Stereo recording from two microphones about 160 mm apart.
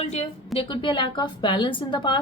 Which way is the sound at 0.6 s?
30° left (ahead or behind).